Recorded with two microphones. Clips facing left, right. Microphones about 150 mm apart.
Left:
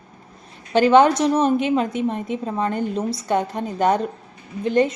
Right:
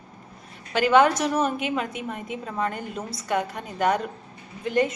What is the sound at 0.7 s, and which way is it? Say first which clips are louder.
A woman's voice: left 5 dB; 30° left (ahead or behind).